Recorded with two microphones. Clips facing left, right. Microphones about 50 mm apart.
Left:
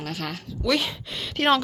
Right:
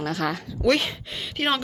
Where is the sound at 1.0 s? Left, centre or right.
Centre.